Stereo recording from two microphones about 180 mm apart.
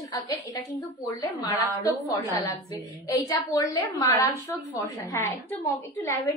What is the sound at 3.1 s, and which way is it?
A woman's voice, 20° left (ahead or behind).